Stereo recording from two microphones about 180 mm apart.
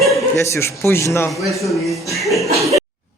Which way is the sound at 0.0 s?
Centre (ahead or behind).